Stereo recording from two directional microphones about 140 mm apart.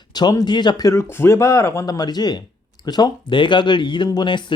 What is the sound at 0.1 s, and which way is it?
Speech, 30° left (ahead or behind).